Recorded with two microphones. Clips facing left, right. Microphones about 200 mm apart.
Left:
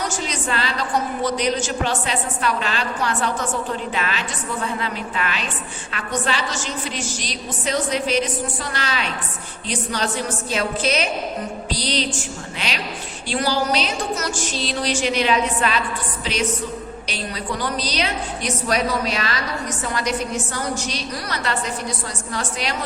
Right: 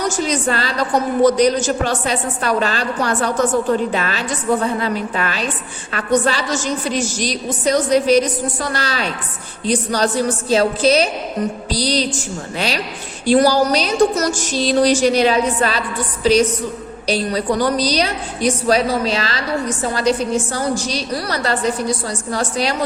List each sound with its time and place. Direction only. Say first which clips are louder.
0.3 s a woman's voice: right 6 dB; 40° right (ahead or behind)